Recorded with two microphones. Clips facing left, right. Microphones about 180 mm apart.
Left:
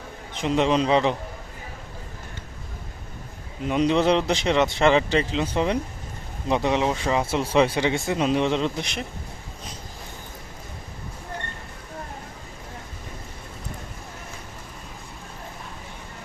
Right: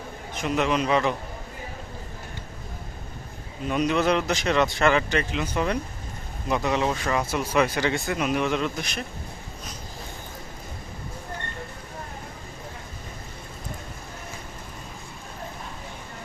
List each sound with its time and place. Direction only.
0.4 s speech: 25° left (ahead or behind)
3.6 s speech: 20° left (ahead or behind)